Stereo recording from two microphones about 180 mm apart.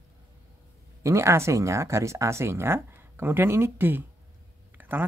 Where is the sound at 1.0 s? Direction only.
15° right (ahead or behind).